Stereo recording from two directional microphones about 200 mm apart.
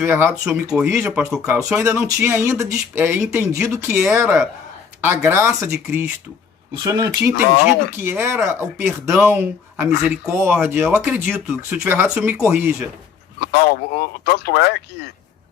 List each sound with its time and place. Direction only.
0.0 s speech: 10° right (ahead or behind)
1.5 s speech: 15° right (ahead or behind)
13.4 s speech: 50° left (ahead or behind)